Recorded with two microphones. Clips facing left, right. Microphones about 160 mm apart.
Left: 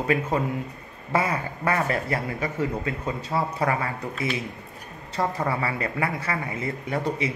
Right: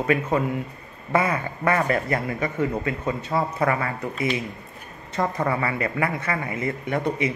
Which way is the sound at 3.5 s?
25° left (ahead or behind).